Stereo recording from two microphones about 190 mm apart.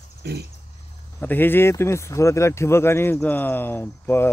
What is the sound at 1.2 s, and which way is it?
Speech, 10° left (ahead or behind).